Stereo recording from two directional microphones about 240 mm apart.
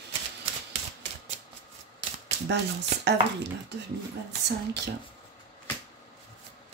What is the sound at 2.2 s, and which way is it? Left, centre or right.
Speech, right.